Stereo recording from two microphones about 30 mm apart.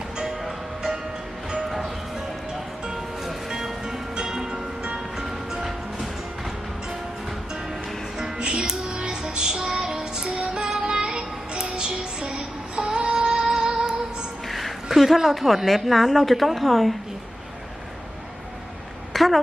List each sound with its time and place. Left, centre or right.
0.2 s music: centre
3.5 s music: centre
8.4 s music: right
14.4 s music: centre
14.8 s a woman's voice: centre
19.1 s a sound: centre